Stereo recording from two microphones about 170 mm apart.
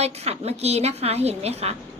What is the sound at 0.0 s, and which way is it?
A woman's voice, 40° right (ahead or behind).